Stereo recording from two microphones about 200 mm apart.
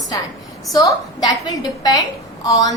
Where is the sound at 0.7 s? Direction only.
20° left (ahead or behind).